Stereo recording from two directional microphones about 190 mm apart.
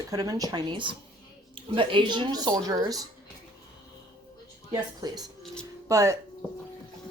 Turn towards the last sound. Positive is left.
turn(degrees=-15)  # may be behind; listen again after turning